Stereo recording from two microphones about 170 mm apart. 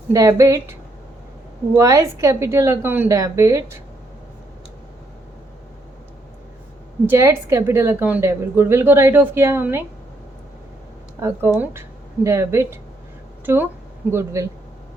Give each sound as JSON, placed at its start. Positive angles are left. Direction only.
{"t": 0.1, "sound": "a woman's voice", "side_deg": -20}
{"t": 7.1, "sound": "a woman's voice", "side_deg": -15}
{"t": 11.2, "sound": "a woman's voice", "side_deg": -15}